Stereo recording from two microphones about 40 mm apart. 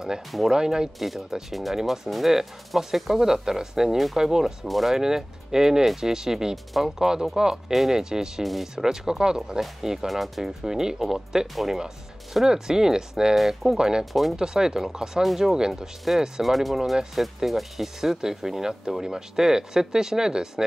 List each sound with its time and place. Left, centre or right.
0.5 s speech: centre
0.9 s speech: centre
4.6 s speech: centre
6.5 s speech: centre
7.0 s speech: centre
9.6 s speech: centre
10.6 s speech: centre
13.7 s speech: centre